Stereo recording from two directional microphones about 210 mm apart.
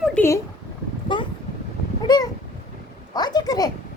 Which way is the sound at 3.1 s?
20° left (ahead or behind).